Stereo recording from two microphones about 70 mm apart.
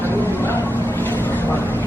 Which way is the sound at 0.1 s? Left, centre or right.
Left.